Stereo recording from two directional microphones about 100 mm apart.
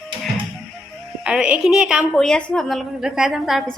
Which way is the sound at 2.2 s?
10° left (ahead or behind).